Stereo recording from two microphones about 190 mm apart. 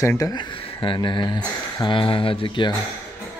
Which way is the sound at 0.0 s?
15° left (ahead or behind).